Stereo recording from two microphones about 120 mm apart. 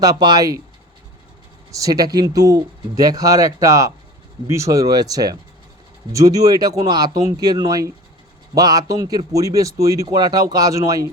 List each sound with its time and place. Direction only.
0.0 s speech: 35° right (ahead or behind)
1.7 s a man's voice: 30° right (ahead or behind)